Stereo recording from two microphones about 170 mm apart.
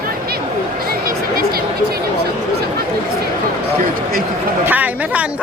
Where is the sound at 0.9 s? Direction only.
60° right (ahead or behind).